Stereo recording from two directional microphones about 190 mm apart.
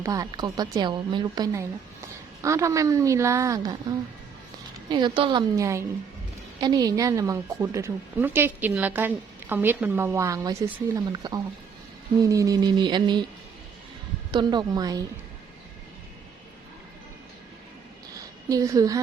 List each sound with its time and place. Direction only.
0.0 s a woman's voice: 20° right (ahead or behind)
4.9 s a woman's voice: 25° right (ahead or behind)
14.3 s a woman's voice: 25° right (ahead or behind)
18.4 s a woman's voice: 20° right (ahead or behind)